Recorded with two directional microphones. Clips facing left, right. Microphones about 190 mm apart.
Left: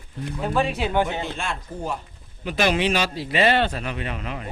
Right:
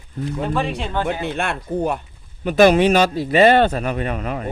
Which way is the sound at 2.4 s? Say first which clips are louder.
Right 9 dB; 50° right (ahead or behind).